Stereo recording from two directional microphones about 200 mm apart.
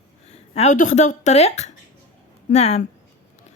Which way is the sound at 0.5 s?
40° left (ahead or behind).